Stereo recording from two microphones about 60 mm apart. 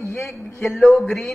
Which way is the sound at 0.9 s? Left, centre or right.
Left.